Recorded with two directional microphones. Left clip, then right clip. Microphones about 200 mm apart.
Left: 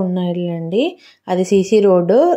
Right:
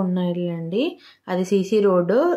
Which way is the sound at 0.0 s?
20° left (ahead or behind).